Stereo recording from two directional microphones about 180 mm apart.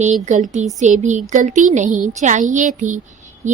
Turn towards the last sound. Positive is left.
turn(degrees=-45)  # may be behind; listen again after turning